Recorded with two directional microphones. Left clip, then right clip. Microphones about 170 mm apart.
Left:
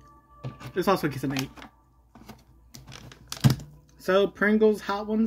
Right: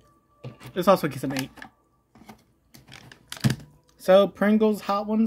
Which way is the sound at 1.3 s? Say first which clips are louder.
Right 1 dB; 15° right (ahead or behind).